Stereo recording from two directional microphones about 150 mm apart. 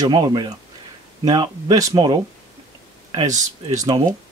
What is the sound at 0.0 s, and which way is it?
Speech, 30° right (ahead or behind).